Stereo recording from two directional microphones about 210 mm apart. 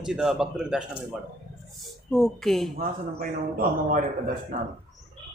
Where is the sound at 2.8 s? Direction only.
45° right (ahead or behind).